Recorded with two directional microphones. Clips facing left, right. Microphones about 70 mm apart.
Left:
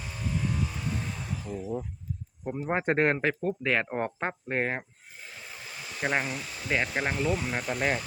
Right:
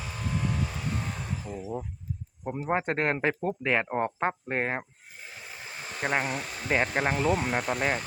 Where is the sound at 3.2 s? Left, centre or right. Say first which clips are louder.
Even; centre.